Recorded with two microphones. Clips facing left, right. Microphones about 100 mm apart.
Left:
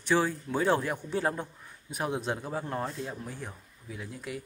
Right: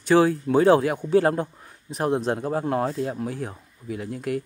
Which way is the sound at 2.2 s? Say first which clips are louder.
Right 8 dB; 50° right (ahead or behind).